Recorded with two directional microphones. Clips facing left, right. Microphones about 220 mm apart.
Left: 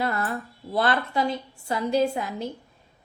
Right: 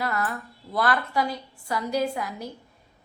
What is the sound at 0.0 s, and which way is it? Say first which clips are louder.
A woman's voice: left 2 dB; 30° left (ahead or behind).